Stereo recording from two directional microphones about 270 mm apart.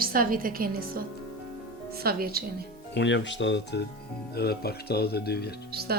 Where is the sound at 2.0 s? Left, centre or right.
Right.